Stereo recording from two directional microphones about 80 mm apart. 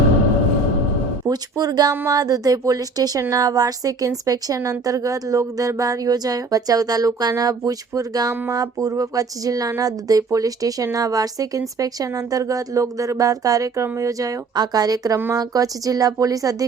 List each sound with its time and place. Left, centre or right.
1.3 s speech: right